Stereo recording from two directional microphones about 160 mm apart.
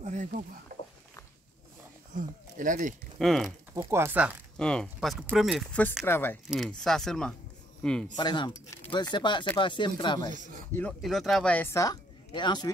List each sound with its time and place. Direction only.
0.0 s speech: 50° right (ahead or behind)
2.1 s speech: 55° right (ahead or behind)
3.2 s speech: 5° left (ahead or behind)
3.7 s speech: 15° right (ahead or behind)
4.6 s speech: 5° left (ahead or behind)
5.7 s speech: 10° left (ahead or behind)
6.5 s speech: centre (ahead or behind)
8.2 s speech: 30° left (ahead or behind)
10.3 s speech: 50° right (ahead or behind)
10.7 s speech: 10° left (ahead or behind)
11.0 s speech: centre (ahead or behind); by 12.7 s 25° left (ahead or behind)